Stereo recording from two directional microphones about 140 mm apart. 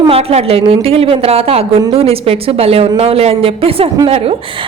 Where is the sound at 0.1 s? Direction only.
45° right (ahead or behind).